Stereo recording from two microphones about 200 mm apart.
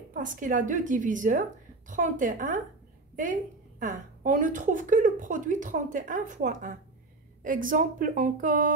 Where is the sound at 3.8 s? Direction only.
40° right (ahead or behind).